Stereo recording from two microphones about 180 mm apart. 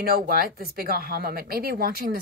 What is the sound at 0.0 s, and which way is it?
Speech, 55° right (ahead or behind).